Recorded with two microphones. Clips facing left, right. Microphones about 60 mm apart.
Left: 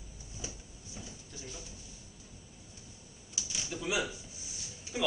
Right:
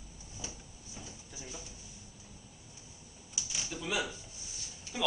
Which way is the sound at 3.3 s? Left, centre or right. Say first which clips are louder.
Left 1 dB; centre.